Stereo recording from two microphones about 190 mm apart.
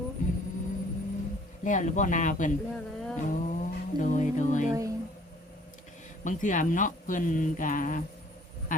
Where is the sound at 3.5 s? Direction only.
40° left (ahead or behind).